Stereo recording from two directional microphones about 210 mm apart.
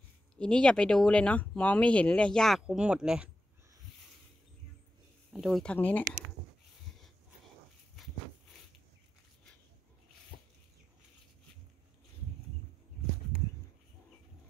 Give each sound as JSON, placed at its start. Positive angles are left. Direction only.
{"t": 0.4, "sound": "speech", "side_deg": 5}
{"t": 5.3, "sound": "speech", "side_deg": 0}